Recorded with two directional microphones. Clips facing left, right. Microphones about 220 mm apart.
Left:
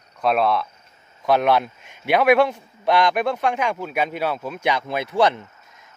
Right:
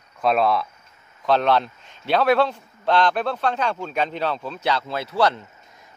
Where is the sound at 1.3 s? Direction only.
10° left (ahead or behind).